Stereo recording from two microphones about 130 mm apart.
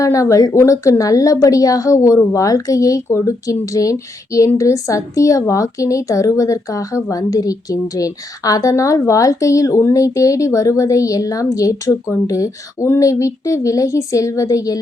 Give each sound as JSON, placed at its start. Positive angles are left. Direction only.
{"t": 0.0, "sound": "a woman's voice", "side_deg": 25}